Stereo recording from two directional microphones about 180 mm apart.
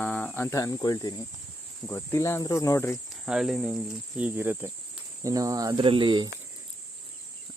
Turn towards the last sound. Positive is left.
turn(degrees=-25)  # may be behind; listen again after turning